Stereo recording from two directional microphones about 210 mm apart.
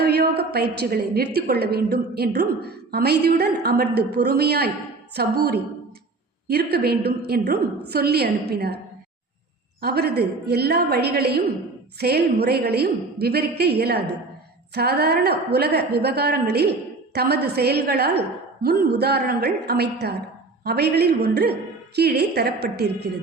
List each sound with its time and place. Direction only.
0.0 s a woman's voice: 50° right (ahead or behind)
9.8 s a woman's voice: 50° right (ahead or behind)